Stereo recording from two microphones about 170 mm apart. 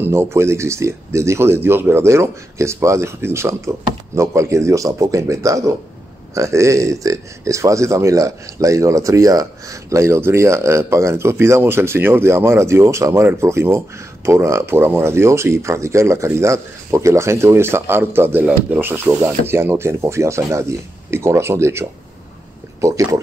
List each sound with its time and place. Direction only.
0.0 s speech: 15° right (ahead or behind)